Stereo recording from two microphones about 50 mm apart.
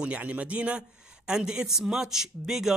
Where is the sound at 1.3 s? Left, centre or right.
Centre.